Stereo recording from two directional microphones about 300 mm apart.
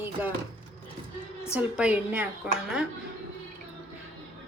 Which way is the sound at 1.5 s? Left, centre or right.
Centre.